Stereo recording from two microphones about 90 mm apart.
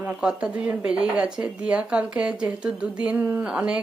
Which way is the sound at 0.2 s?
10° right (ahead or behind).